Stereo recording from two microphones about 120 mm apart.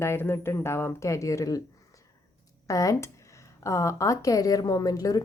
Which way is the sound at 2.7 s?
30° left (ahead or behind).